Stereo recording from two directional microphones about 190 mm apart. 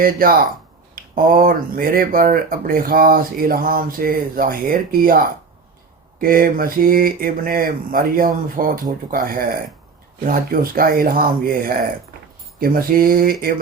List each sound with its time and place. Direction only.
0.0 s speech: 50° right (ahead or behind)